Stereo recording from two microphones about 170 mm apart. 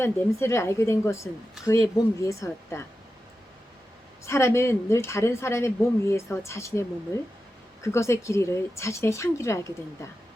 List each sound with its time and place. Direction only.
0.0 s a woman's voice: 15° left (ahead or behind)
4.3 s a woman's voice: 15° left (ahead or behind)